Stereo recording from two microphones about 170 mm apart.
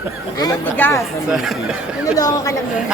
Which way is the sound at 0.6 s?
15° left (ahead or behind).